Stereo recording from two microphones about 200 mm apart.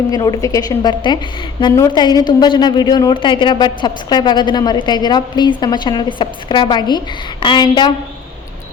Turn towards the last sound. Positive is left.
turn(degrees=20)  # may be behind; listen again after turning